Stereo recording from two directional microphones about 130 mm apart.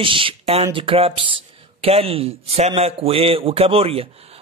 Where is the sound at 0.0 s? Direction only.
40° right (ahead or behind).